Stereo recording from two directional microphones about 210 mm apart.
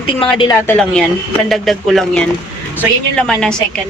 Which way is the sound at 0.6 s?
5° left (ahead or behind).